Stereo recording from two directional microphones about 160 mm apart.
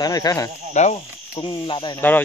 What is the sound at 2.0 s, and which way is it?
Speech, 10° left (ahead or behind).